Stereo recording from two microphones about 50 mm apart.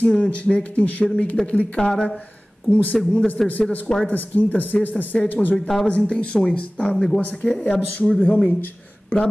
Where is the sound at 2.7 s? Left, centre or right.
Left.